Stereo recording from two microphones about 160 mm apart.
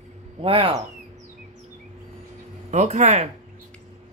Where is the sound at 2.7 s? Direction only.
45° right (ahead or behind).